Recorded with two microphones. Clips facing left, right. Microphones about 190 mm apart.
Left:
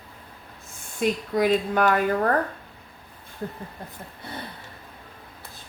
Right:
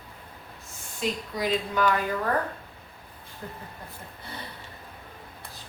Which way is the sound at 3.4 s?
45° left (ahead or behind).